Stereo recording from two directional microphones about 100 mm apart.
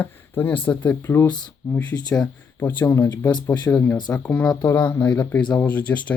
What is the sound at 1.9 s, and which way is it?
Speech, 45° left (ahead or behind).